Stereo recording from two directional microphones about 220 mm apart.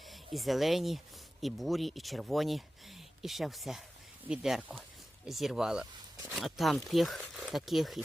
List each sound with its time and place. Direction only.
0.0 s speech: centre (ahead or behind)